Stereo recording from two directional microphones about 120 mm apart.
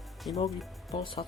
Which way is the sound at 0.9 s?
50° left (ahead or behind).